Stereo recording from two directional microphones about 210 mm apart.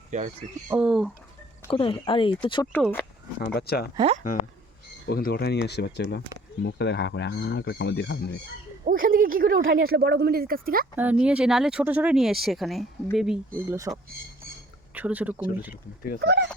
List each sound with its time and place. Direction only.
0.1 s speech: 35° right (ahead or behind)
0.7 s speech: 5° right (ahead or behind)
1.7 s speech: 25° left (ahead or behind)
2.7 s speech: 10° left (ahead or behind)
3.4 s speech: 45° left (ahead or behind)
3.9 s speech: 25° right (ahead or behind)
5.0 s speech: 50° left (ahead or behind)
8.8 s speech: 40° right (ahead or behind)
10.9 s speech: 5° right (ahead or behind)
13.7 s speech: 15° right (ahead or behind)
16.2 s speech: 55° right (ahead or behind)